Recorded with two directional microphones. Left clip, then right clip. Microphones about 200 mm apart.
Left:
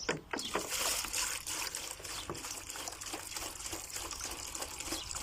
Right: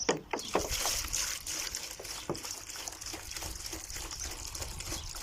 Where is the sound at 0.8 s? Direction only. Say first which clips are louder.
Right 1 dB; centre (ahead or behind).